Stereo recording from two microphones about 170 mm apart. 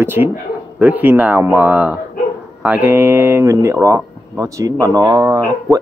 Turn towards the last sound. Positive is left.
turn(degrees=-10)  # may be behind; listen again after turning